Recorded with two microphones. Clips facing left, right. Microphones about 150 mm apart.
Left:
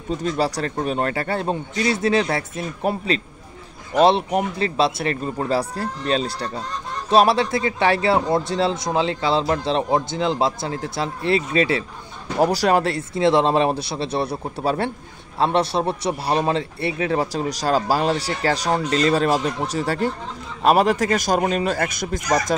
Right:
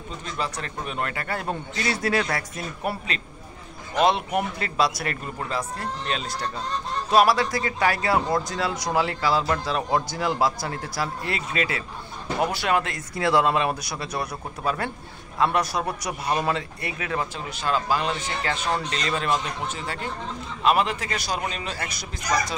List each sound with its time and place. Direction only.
0.2 s a man's voice: 35° left (ahead or behind)